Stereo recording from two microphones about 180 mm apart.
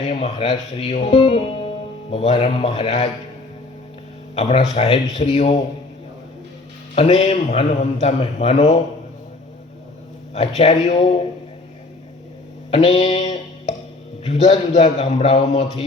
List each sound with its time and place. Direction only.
0.1 s speech: 40° left (ahead or behind)
4.4 s speech: 35° left (ahead or behind)
6.9 s speech: 35° left (ahead or behind)
10.3 s speech: 35° left (ahead or behind)
12.7 s music: 35° left (ahead or behind)
14.3 s speech: 35° left (ahead or behind)